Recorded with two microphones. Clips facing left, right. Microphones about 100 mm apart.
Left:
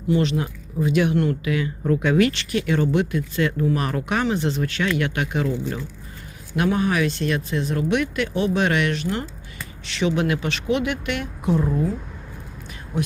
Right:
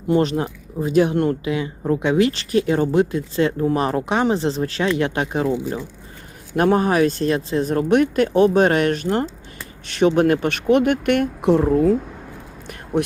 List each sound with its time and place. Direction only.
0.1 s speech: 40° right (ahead or behind)
1.5 s speech: 25° right (ahead or behind)
6.6 s speech: 40° right (ahead or behind)
11.5 s speech: 70° right (ahead or behind)